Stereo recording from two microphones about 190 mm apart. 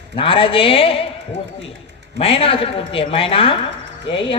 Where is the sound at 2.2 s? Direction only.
30° left (ahead or behind).